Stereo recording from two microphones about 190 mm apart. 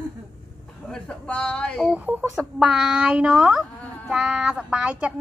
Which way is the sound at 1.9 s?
10° right (ahead or behind).